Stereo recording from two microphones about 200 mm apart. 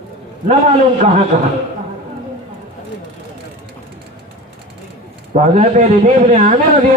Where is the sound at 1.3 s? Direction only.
40° right (ahead or behind).